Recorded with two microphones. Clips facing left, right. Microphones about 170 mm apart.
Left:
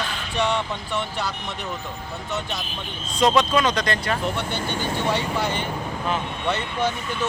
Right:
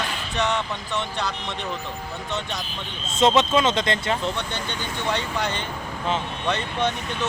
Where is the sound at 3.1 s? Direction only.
25° right (ahead or behind).